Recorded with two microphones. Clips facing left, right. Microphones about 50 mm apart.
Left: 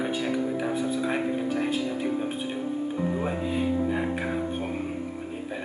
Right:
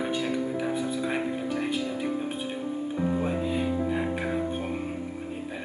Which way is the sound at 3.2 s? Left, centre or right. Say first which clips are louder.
Even; centre.